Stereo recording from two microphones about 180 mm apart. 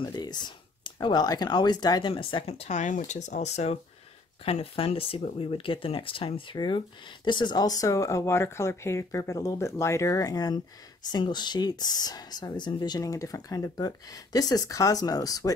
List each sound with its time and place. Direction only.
0.0 s speech: 25° left (ahead or behind)